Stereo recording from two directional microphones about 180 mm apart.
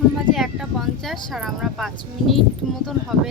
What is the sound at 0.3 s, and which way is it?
Speech, centre (ahead or behind).